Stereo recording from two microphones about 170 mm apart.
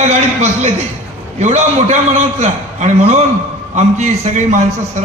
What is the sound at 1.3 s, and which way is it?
A man's voice, 40° right (ahead or behind).